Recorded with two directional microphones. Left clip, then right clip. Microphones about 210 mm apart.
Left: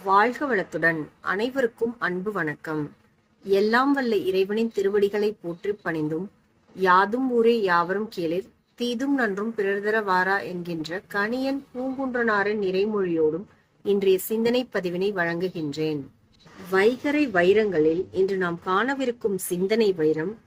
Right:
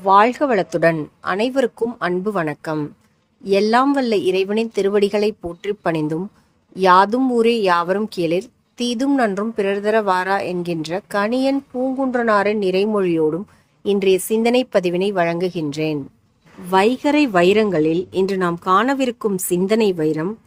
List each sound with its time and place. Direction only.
0.0 s a woman's voice: 45° right (ahead or behind)